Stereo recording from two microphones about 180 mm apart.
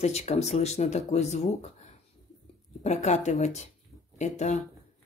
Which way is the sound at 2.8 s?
40° left (ahead or behind).